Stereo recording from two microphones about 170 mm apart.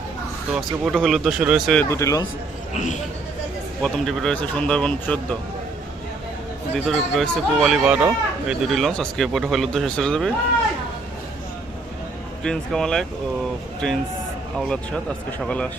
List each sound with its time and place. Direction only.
0.5 s speech: centre (ahead or behind)
1.8 s speech: 15° left (ahead or behind)
2.7 s speech: 45° left (ahead or behind)
3.8 s speech: 5° left (ahead or behind)
6.7 s speech: centre (ahead or behind)
12.4 s speech: 5° left (ahead or behind)
15.4 s speech: 5° left (ahead or behind)